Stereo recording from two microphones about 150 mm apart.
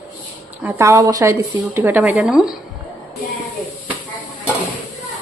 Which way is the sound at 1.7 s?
15° right (ahead or behind).